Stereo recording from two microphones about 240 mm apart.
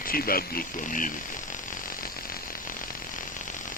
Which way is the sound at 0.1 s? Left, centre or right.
Left.